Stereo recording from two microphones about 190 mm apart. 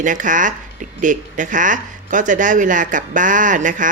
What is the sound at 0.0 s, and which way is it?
Speech, 45° right (ahead or behind).